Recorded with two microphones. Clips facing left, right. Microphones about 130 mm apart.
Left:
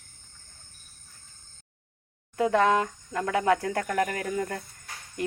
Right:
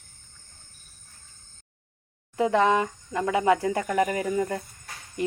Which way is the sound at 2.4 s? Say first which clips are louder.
Right 1 dB; 5° right (ahead or behind).